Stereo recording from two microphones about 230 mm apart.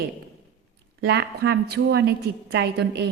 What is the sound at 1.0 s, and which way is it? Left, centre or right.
A woman's voice, right.